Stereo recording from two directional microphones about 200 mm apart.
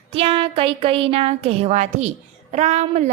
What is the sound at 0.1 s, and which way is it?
Speech, 30° right (ahead or behind).